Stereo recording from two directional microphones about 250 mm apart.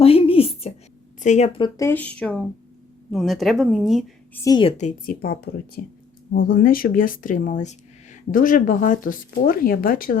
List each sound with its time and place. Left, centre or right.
0.0 s a sound: left
1.2 s speech: left; by 4.0 s centre
4.4 s speech: centre
4.8 s speech: left